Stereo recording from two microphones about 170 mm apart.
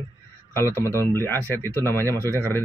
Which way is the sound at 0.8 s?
15° left (ahead or behind).